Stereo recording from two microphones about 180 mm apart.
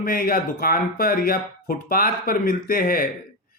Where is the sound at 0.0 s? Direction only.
55° left (ahead or behind).